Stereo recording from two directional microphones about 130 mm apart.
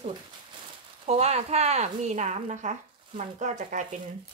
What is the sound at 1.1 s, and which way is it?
Speech, 55° right (ahead or behind).